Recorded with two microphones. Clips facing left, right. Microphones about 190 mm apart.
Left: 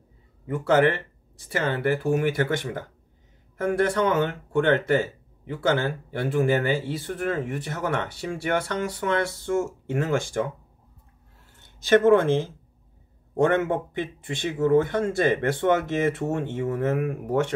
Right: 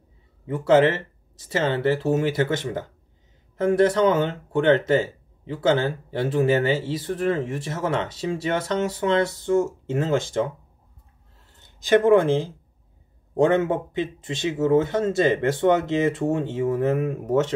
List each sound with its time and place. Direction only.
0.7 s speech: 25° right (ahead or behind)
11.5 s a sound: 15° right (ahead or behind)
13.4 s speech: 20° right (ahead or behind)